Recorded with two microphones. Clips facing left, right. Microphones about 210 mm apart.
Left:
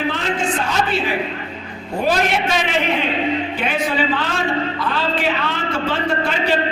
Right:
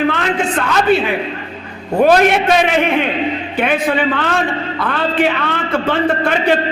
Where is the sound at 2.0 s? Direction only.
60° right (ahead or behind).